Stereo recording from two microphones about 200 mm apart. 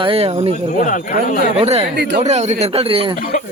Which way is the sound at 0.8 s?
40° left (ahead or behind).